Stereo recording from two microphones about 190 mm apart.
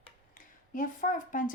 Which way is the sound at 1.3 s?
45° left (ahead or behind).